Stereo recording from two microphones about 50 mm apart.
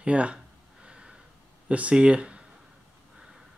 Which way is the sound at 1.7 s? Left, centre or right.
Right.